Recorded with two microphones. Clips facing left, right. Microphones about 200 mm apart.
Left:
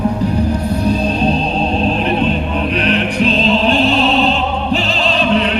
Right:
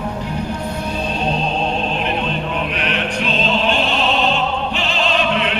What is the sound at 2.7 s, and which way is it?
Music, 35° left (ahead or behind).